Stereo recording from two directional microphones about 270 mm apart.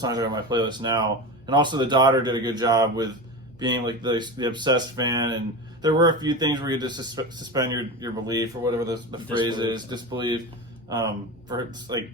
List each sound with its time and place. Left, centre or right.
0.0 s speech: centre